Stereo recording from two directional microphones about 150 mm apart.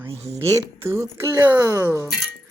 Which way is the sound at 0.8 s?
15° right (ahead or behind).